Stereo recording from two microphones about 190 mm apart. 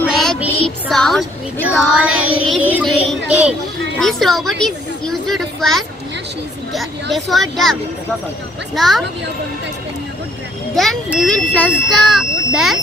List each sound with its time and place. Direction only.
0.2 s music: centre (ahead or behind)
1.8 s child singing: 5° right (ahead or behind)
4.0 s speech: centre (ahead or behind)
8.7 s speech: centre (ahead or behind)
10.7 s speech: centre (ahead or behind)